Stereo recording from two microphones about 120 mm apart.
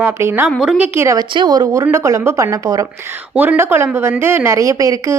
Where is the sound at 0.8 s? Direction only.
20° right (ahead or behind).